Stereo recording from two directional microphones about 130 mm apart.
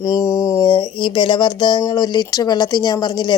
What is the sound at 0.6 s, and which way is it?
Speech, 40° left (ahead or behind).